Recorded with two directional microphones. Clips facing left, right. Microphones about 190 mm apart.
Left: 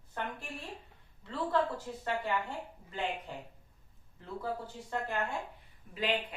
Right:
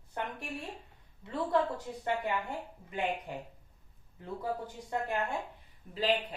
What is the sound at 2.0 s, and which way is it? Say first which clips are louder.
A woman's voice: right 1 dB; 15° right (ahead or behind).